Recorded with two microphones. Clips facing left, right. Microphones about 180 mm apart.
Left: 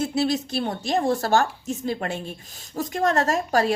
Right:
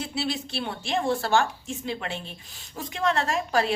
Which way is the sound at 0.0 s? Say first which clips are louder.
Left 7 dB; 45° left (ahead or behind).